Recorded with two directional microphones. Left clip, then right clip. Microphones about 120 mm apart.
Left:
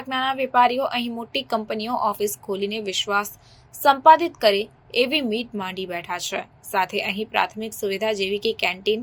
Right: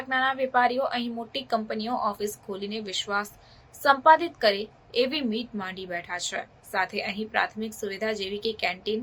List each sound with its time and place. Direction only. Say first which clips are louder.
0.1 s a woman's voice: left 2 dB; 20° left (ahead or behind)